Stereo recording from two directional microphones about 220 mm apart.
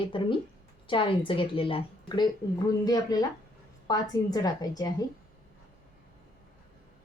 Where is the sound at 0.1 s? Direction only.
25° left (ahead or behind).